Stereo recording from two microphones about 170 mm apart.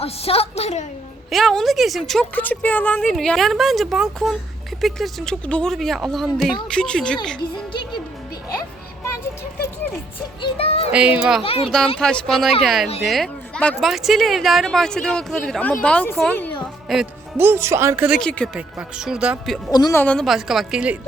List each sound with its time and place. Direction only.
0.0 s a woman's voice: 35° left (ahead or behind)
1.3 s speech: centre (ahead or behind)
7.3 s speech: 25° left (ahead or behind)
10.4 s child singing: 35° left (ahead or behind)
11.2 s speech: 5° right (ahead or behind)
11.4 s a woman's voice: 35° left (ahead or behind)
11.9 s speech: 5° left (ahead or behind)
17.3 s speech: 15° right (ahead or behind)
18.2 s speech: 5° left (ahead or behind)
19.7 s speech: 25° left (ahead or behind)
20.0 s speech: 5° left (ahead or behind)